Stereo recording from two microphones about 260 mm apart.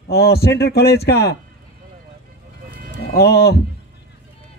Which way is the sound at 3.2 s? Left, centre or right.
Left.